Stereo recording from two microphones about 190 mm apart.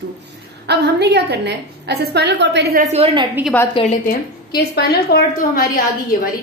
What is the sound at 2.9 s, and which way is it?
Speech, 30° right (ahead or behind).